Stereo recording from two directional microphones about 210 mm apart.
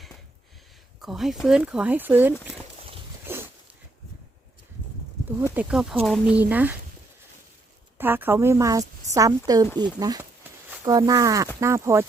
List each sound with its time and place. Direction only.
1.0 s speech: centre (ahead or behind)
3.3 s a sound: 10° right (ahead or behind)
5.5 s speech: 5° right (ahead or behind)
7.9 s speech: 10° right (ahead or behind)